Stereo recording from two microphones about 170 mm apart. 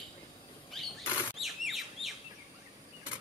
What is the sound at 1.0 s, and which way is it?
Chirp, 20° left (ahead or behind).